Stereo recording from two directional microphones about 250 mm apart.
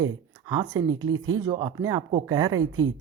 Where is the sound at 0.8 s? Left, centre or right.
Right.